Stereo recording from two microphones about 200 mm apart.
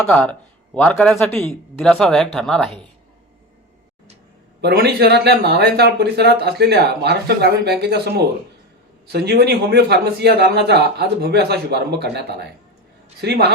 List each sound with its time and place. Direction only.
0.0 s speech: 5° left (ahead or behind)
4.6 s speech: 55° right (ahead or behind)